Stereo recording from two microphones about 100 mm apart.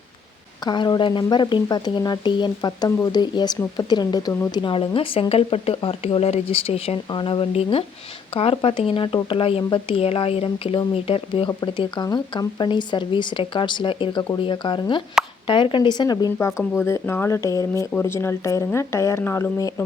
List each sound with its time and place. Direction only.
0.6 s speech: 45° left (ahead or behind)
4.5 s speech: 55° left (ahead or behind)
5.3 s speech: 85° left
7.1 s speech: 55° left (ahead or behind)
7.5 s speech: 65° left (ahead or behind)
11.4 s speech: 50° left (ahead or behind)
16.6 s speech: 25° left (ahead or behind)